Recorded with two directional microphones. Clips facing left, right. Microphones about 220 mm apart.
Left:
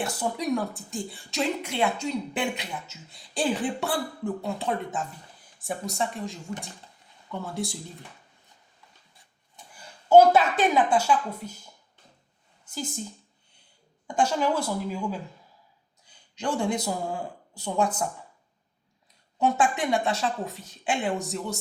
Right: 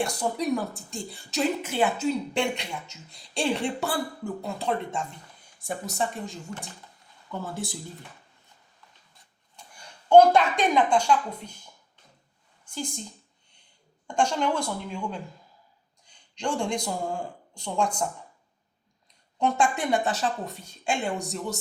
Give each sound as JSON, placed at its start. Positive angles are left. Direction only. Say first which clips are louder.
{"t": 0.0, "sound": "speech", "louder": "right 2 dB", "side_deg": 5}
{"t": 9.6, "sound": "a woman's voice", "louder": "left 1 dB", "side_deg": 5}
{"t": 12.6, "sound": "speech", "louder": "even", "side_deg": 5}
{"t": 14.1, "sound": "speech", "louder": "left 1 dB", "side_deg": 5}
{"t": 19.4, "sound": "speech", "louder": "left 1 dB", "side_deg": 5}